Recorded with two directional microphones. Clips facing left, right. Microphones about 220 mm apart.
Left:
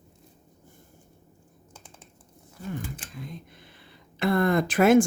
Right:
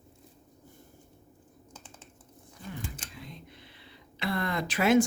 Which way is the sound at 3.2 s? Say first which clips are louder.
Left 5 dB; 50° left (ahead or behind).